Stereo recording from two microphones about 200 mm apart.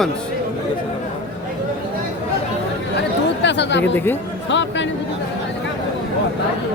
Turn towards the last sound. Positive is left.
turn(degrees=65)  # may be behind; listen again after turning